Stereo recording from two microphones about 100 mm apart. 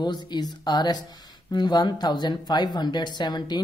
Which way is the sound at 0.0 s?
45° left (ahead or behind).